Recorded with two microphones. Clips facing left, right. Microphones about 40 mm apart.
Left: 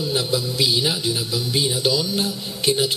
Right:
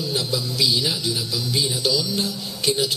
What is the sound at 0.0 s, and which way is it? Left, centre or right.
A man's voice, left.